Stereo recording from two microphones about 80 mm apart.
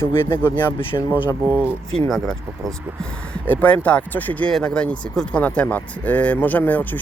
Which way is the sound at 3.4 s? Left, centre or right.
Left.